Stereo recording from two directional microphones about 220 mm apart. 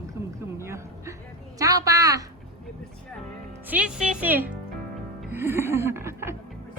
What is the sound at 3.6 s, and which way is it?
Speech, 5° right (ahead or behind).